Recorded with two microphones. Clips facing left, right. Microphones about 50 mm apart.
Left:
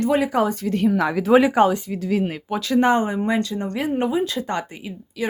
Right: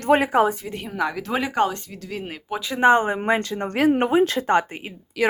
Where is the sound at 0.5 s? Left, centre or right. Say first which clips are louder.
Left 7 dB; centre.